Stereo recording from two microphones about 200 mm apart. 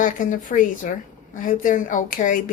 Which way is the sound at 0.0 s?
40° left (ahead or behind).